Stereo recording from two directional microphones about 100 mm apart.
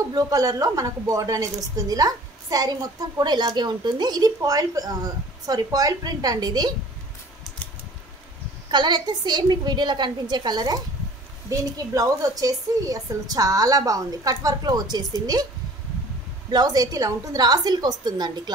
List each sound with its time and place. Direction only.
0.1 s a woman's voice: 40° right (ahead or behind)
8.6 s a woman's voice: 50° right (ahead or behind)
16.4 s a woman's voice: 40° right (ahead or behind)